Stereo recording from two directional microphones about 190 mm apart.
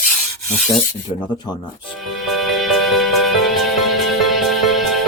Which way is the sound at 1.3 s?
25° left (ahead or behind).